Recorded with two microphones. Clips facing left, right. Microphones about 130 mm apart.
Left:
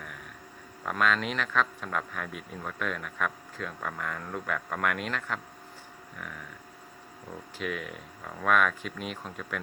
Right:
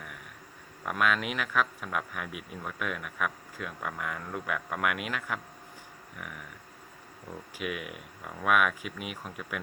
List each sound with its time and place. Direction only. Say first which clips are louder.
0.9 s speech: left 1 dB; 10° right (ahead or behind)
7.6 s speech: left 1 dB; 10° right (ahead or behind)